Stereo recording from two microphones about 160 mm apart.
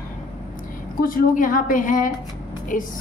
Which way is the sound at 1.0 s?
60° left (ahead or behind).